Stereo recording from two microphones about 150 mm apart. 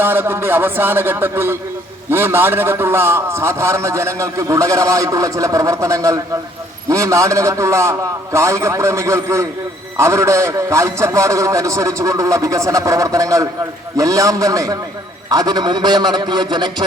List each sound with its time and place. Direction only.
0.0 s a man's voice: 15° right (ahead or behind)